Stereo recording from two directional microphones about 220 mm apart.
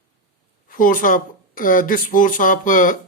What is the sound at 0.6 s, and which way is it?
Speech, 40° left (ahead or behind).